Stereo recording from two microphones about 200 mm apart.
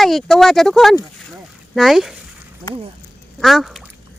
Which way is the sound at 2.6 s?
15° right (ahead or behind).